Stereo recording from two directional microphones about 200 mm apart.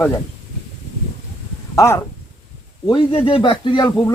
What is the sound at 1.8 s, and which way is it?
Speech, 15° left (ahead or behind).